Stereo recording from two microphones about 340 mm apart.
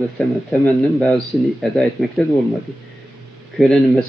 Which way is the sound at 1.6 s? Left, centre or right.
Centre.